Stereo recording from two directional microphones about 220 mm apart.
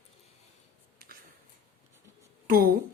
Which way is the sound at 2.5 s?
40° right (ahead or behind).